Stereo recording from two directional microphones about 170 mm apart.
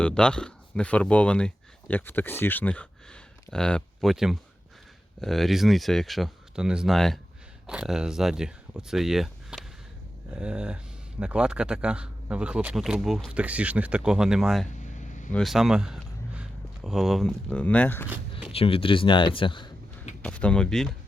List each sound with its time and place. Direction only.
0.0 s speech: 5° left (ahead or behind)
14.8 s vehicle: 45° left (ahead or behind)
15.3 s speech: centre (ahead or behind)
18.4 s speech: 35° left (ahead or behind)
20.2 s speech: 5° left (ahead or behind)